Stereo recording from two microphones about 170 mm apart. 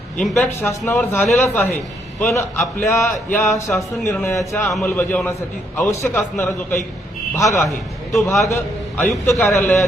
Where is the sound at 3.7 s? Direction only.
10° left (ahead or behind).